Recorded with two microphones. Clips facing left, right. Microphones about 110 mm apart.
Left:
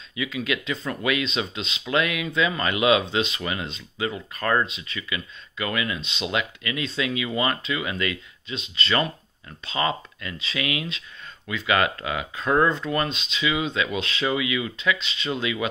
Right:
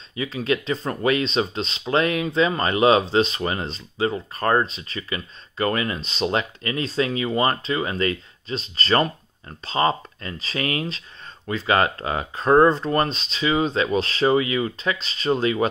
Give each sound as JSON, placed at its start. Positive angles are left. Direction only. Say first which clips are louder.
{"t": 0.1, "sound": "speech", "louder": "right 4 dB", "side_deg": -35}